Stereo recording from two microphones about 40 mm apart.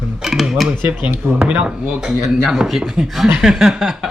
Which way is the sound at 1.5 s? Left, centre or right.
Right.